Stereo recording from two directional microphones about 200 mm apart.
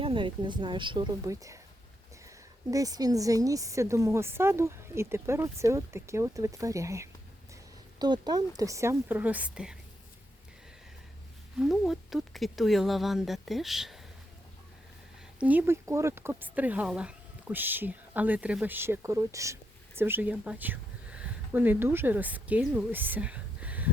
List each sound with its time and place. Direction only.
0.0 s a woman's voice: 25° right (ahead or behind); by 9.7 s 5° right (ahead or behind)
11.6 s speech: centre (ahead or behind)
15.4 s a woman's voice: 10° right (ahead or behind)